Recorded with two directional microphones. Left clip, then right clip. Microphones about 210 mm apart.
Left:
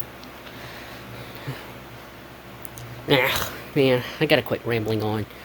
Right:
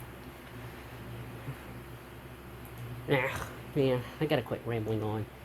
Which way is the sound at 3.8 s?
25° left (ahead or behind).